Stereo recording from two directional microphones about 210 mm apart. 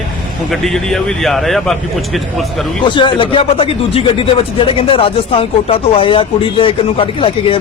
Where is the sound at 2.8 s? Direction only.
20° left (ahead or behind).